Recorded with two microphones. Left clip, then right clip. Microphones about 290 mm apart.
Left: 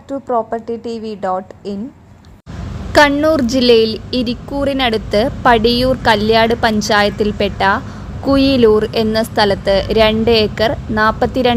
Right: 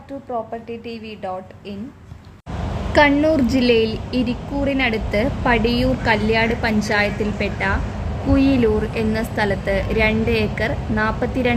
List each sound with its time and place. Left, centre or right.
0.3 s a woman's voice: left
2.9 s a woman's voice: left